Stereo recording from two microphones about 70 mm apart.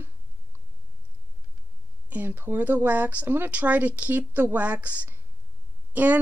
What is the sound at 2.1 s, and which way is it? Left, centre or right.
Speech, right.